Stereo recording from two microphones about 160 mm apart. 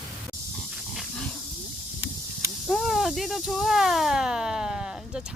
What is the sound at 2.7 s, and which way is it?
A woman's voice, centre (ahead or behind).